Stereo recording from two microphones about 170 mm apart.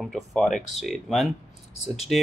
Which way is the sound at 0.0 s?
Centre (ahead or behind).